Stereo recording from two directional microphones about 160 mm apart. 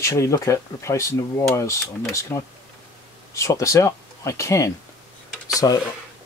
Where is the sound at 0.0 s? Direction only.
20° left (ahead or behind).